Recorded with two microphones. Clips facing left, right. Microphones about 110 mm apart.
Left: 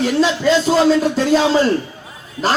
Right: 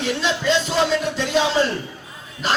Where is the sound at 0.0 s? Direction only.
40° left (ahead or behind).